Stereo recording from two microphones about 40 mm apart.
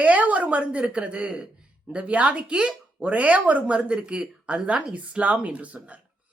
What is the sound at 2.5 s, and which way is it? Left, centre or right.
Speech, right.